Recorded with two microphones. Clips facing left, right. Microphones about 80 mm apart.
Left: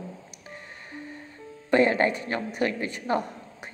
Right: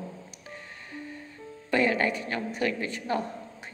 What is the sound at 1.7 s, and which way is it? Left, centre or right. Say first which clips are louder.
A woman's voice: left 4 dB; left.